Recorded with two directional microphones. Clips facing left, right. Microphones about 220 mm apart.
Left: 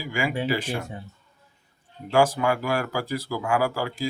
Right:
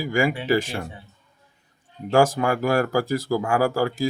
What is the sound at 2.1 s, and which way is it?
Speech, 45° right (ahead or behind).